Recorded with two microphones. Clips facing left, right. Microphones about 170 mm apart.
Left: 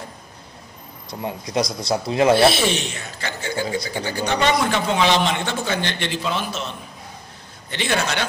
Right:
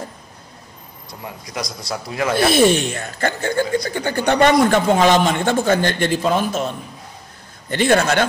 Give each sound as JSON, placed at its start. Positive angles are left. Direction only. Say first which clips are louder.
{"t": 1.2, "sound": "speech", "louder": "left 6 dB", "side_deg": 25}
{"t": 2.3, "sound": "speech", "louder": "right 3 dB", "side_deg": -50}